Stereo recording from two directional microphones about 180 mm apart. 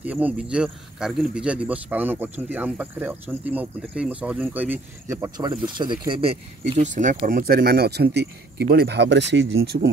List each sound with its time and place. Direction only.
0.0 s speech: 10° right (ahead or behind); by 7.2 s 40° right (ahead or behind)
7.2 s speech: 55° right (ahead or behind); by 9.8 s 80° right